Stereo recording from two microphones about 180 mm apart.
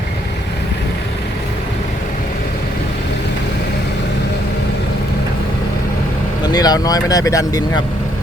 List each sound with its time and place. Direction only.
6.5 s speech: 20° left (ahead or behind)